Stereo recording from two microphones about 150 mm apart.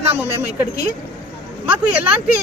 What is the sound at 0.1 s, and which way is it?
Speech, 15° right (ahead or behind).